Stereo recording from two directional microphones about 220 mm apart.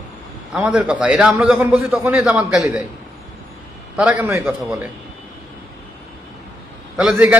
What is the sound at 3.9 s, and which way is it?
Speech, 5° right (ahead or behind).